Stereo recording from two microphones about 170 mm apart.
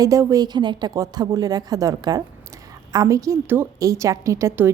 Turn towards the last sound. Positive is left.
turn(degrees=-15)  # may be behind; listen again after turning